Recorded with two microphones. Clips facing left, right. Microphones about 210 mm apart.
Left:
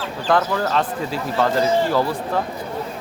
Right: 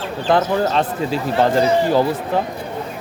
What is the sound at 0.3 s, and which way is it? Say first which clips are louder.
Speech: right 3 dB; 25° right (ahead or behind).